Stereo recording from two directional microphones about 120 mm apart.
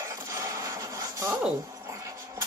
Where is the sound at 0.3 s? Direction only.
25° right (ahead or behind).